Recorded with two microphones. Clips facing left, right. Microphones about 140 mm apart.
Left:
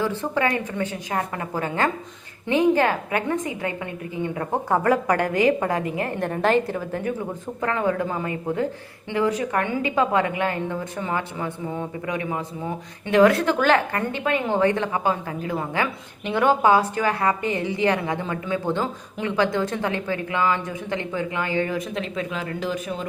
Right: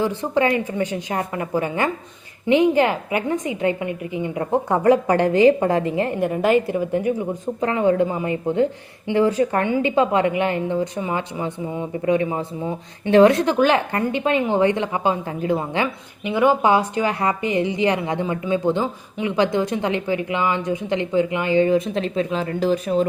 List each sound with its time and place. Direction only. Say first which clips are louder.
0.0 s a woman's voice: right 4 dB; 15° right (ahead or behind)
6.1 s a woman's voice: right 2 dB; 10° right (ahead or behind)
16.2 s speech: right 2 dB; 10° right (ahead or behind); by 23.0 s 35° right (ahead or behind)